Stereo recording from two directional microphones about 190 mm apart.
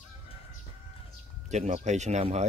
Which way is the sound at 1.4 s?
40° right (ahead or behind).